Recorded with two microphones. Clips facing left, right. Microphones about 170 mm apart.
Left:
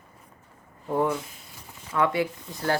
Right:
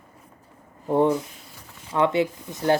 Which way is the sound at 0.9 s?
25° right (ahead or behind).